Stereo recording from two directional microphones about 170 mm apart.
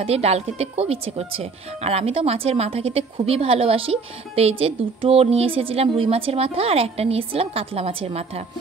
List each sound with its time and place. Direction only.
0.0 s speech: 35° right (ahead or behind)